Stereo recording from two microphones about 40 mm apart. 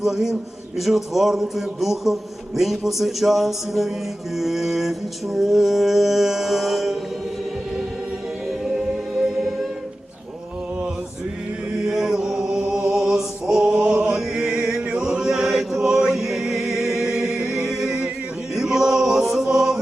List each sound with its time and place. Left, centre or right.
0.0 s mantra: centre
0.8 s a man's voice: centre
4.4 s mantra: centre
8.4 s music: centre
11.9 s chant: centre
14.6 s music: right
14.9 s choir: right
16.1 s music: centre
16.4 s music: centre
18.5 s chant: centre